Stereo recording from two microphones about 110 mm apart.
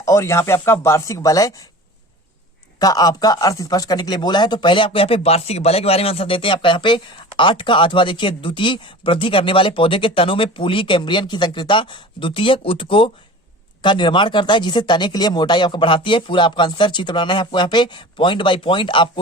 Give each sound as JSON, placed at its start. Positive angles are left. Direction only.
{"t": 0.0, "sound": "speech", "side_deg": 25}
{"t": 2.7, "sound": "speech", "side_deg": 35}